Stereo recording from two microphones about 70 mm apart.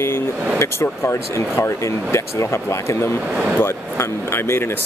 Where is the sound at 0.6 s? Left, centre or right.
Left.